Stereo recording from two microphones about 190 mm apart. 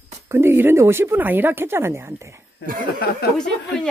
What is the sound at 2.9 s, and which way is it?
Speech, 55° left (ahead or behind).